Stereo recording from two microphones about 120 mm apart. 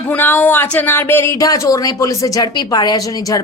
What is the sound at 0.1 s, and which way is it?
A woman's voice, 15° left (ahead or behind).